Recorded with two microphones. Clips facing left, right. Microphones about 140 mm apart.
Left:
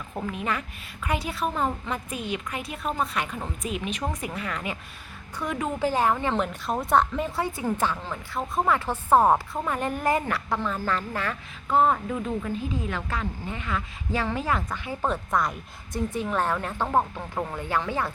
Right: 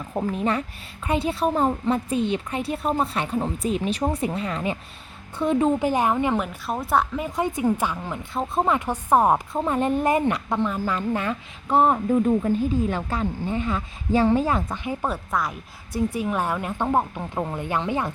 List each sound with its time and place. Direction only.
0.1 s a woman's voice: 35° right (ahead or behind); by 6.4 s 15° right (ahead or behind)
6.4 s a woman's voice: 5° right (ahead or behind)
7.3 s a woman's voice: 20° right (ahead or behind)
15.0 s a woman's voice: 5° right (ahead or behind)